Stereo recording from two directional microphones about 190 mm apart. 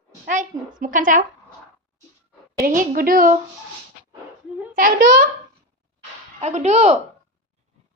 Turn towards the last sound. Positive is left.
turn(degrees=-35)  # may be behind; listen again after turning